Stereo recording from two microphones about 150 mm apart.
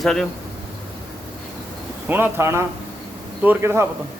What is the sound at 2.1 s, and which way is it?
A man's voice, 15° right (ahead or behind).